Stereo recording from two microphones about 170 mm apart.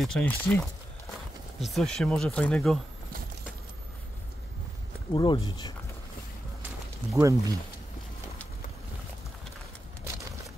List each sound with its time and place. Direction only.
0.0 s speech: 5° left (ahead or behind)
5.1 s speech: 25° left (ahead or behind)
7.2 s speech: 20° right (ahead or behind)